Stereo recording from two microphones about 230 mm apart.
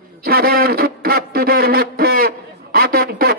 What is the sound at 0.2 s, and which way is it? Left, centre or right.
A man's voice, right.